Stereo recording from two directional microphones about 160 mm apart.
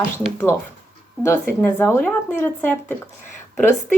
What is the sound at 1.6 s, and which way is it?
Speech, 15° left (ahead or behind).